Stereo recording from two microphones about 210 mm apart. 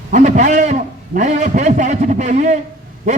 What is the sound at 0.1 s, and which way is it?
A man's voice, 35° right (ahead or behind).